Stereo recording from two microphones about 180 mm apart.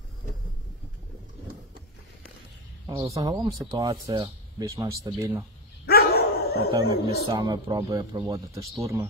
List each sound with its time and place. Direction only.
3.0 s a man's voice: 25° right (ahead or behind)
4.7 s a man's voice: 20° right (ahead or behind)
5.9 s dog: 60° left (ahead or behind)
6.7 s a man's voice: 25° right (ahead or behind)